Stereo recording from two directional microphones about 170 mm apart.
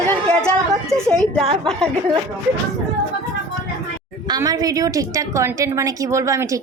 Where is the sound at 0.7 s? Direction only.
5° left (ahead or behind).